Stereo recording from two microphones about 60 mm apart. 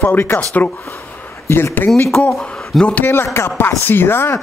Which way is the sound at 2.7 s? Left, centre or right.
Centre.